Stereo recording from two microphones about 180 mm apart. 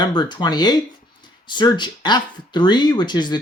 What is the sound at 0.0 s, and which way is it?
Speech, 25° left (ahead or behind).